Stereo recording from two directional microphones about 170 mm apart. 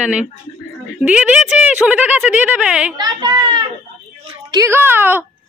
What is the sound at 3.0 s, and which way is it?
A child's voice, 25° right (ahead or behind).